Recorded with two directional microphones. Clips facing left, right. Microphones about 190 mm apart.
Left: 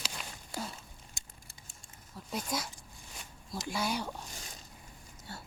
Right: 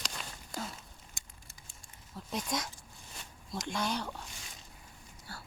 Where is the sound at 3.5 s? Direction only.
5° left (ahead or behind).